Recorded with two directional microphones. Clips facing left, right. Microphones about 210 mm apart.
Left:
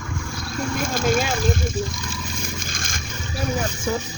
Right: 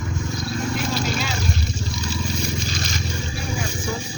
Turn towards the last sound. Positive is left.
turn(degrees=50)  # may be behind; listen again after turning